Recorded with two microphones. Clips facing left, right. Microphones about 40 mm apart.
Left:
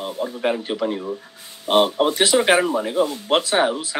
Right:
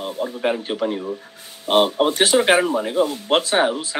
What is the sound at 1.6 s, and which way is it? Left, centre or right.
Speech, right.